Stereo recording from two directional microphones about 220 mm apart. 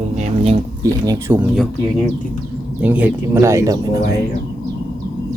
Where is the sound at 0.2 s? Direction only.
30° right (ahead or behind).